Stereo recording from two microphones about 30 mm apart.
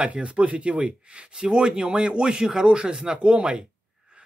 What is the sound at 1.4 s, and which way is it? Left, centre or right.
Speech, right.